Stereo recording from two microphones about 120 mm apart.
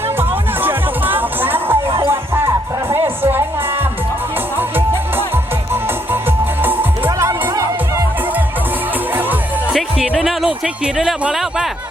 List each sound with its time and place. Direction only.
0.2 s music: 15° right (ahead or behind)
6.6 s music: 15° right (ahead or behind)
9.7 s music: centre (ahead or behind)
10.9 s speech: 5° right (ahead or behind)